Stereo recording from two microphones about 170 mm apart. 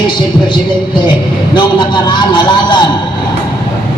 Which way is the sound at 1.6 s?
25° left (ahead or behind).